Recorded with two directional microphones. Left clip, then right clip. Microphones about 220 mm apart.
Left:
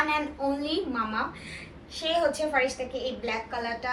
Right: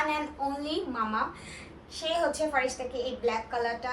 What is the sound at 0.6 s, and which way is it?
Speech, 15° right (ahead or behind).